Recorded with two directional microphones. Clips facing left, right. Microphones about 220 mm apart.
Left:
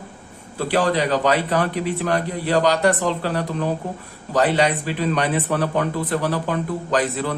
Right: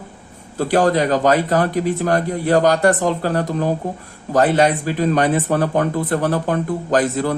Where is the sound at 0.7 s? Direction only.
45° right (ahead or behind).